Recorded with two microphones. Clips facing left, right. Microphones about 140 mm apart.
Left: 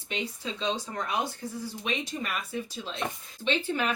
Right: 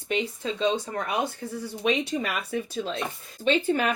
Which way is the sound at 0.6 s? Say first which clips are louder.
Right 5 dB; 55° right (ahead or behind).